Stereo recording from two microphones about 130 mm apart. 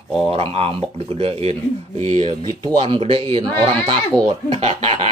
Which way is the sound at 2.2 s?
40° right (ahead or behind).